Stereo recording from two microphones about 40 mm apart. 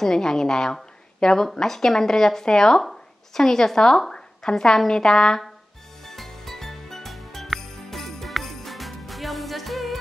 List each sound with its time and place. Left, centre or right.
0.0 s speech: centre
6.0 s music: centre